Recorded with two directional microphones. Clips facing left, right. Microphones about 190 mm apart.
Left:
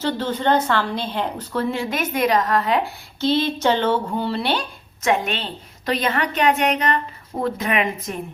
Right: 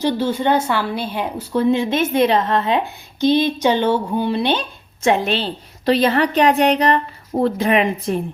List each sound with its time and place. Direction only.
0.0 s speech: 10° right (ahead or behind)
5.0 s a woman's voice: 30° right (ahead or behind)